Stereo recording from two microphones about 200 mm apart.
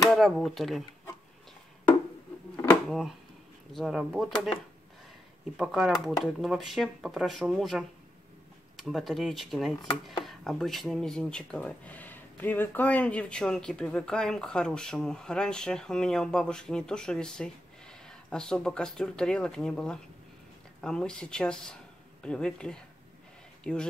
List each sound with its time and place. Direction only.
0.1 s speech: centre (ahead or behind)
2.9 s speech: centre (ahead or behind)
5.6 s speech: centre (ahead or behind)